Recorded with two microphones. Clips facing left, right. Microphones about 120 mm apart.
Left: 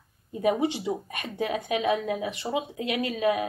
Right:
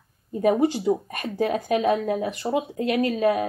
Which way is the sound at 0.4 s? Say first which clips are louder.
Right 4 dB; centre (ahead or behind).